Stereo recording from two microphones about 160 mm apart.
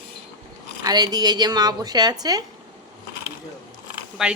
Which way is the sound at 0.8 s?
25° right (ahead or behind).